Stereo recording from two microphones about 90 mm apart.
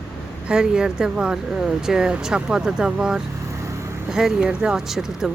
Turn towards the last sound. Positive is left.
turn(degrees=-5)  # may be behind; listen again after turning